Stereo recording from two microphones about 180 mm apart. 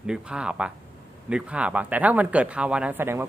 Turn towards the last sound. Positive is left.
turn(degrees=-15)  # may be behind; listen again after turning